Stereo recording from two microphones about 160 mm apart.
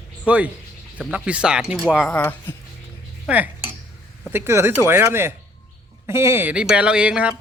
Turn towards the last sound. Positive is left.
turn(degrees=-5)  # may be behind; listen again after turning